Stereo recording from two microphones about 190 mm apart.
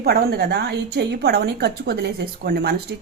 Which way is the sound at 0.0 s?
55° right (ahead or behind).